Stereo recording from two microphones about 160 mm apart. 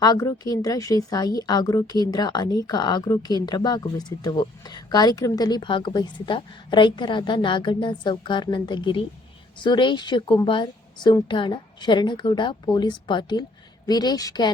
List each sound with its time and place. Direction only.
0.0 s a woman's voice: 25° left (ahead or behind)